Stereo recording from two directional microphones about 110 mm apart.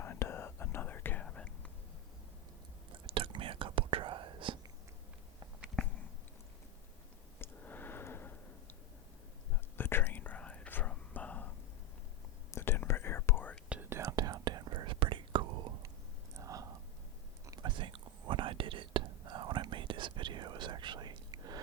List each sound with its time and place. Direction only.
0.0 s whispering: 20° left (ahead or behind)
3.1 s whispering: 55° right (ahead or behind)
5.8 s a sound: 5° left (ahead or behind)
7.3 s a sound: 20° left (ahead or behind)
9.7 s whispering: 20° left (ahead or behind)
12.5 s whispering: 20° left (ahead or behind)
13.9 s whispering: 30° right (ahead or behind); by 15.7 s 45° right (ahead or behind)
16.3 s a sound: 30° right (ahead or behind)
17.7 s whispering: 45° right (ahead or behind)